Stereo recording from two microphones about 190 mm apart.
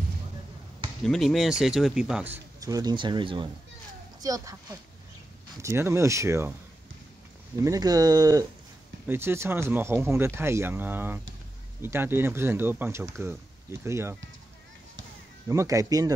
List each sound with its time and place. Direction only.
1.0 s speech: centre (ahead or behind)
2.3 s speech: 20° right (ahead or behind)
7.6 s speech: 20° right (ahead or behind)
15.4 s speech: 15° right (ahead or behind)